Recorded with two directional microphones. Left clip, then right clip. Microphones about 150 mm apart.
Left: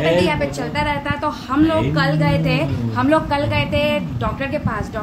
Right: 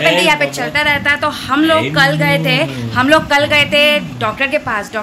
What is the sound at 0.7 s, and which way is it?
A woman's voice, 5° left (ahead or behind).